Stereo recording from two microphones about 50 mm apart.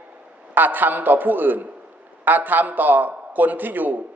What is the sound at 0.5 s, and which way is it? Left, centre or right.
A man's voice, right.